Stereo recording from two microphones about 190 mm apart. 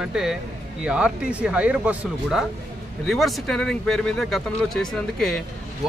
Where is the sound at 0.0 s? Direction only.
Centre (ahead or behind).